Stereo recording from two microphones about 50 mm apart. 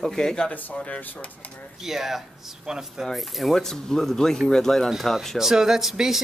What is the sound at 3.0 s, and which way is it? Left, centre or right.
Speech, centre.